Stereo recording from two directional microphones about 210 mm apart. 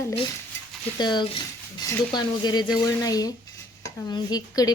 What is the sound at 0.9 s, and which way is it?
Speech, 20° left (ahead or behind).